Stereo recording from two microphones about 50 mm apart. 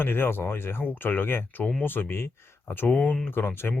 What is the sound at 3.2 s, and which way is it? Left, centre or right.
Speech, left.